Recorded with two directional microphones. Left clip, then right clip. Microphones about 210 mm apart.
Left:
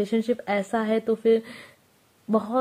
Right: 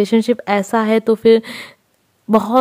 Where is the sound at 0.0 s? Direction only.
45° right (ahead or behind).